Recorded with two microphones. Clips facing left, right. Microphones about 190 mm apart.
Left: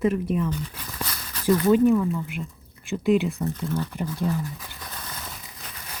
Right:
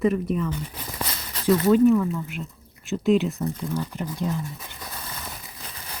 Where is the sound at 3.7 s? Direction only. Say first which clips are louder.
Left 1 dB; 15° right (ahead or behind).